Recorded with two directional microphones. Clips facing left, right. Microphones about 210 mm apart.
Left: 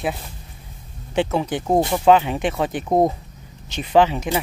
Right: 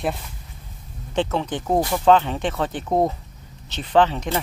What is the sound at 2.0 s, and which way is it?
Speech, 10° left (ahead or behind).